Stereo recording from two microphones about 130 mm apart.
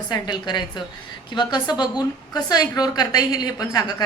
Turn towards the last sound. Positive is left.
turn(degrees=30)  # may be behind; listen again after turning